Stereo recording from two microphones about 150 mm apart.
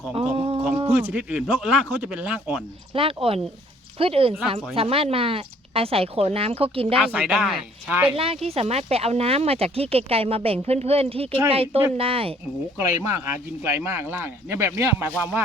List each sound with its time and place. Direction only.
0.1 s speech: 40° right (ahead or behind)
1.0 s speech: 10° right (ahead or behind)
2.9 s speech: 35° right (ahead or behind)
7.0 s speech: 10° right (ahead or behind)
8.1 s speech: 40° right (ahead or behind)
12.7 s speech: 15° right (ahead or behind)